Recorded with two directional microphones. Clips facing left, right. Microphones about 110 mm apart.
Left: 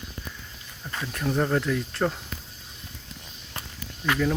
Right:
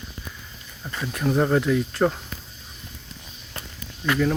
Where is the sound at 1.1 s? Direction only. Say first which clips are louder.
Right 4 dB; 5° right (ahead or behind).